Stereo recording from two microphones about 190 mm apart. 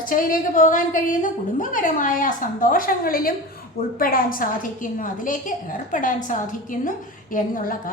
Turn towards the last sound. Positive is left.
turn(degrees=45)  # may be behind; listen again after turning